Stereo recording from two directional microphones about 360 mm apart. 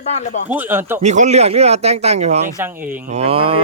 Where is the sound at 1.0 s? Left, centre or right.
Centre.